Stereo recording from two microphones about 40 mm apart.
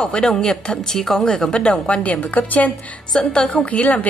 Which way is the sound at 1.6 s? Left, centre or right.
Left.